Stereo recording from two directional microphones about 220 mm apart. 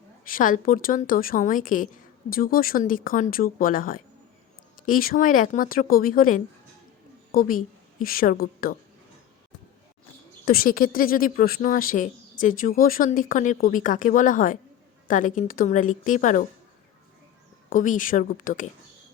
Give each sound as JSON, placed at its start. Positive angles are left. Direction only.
{"t": 0.3, "sound": "a woman's voice", "side_deg": 40}
{"t": 10.4, "sound": "speech", "side_deg": 40}
{"t": 17.7, "sound": "speech", "side_deg": 35}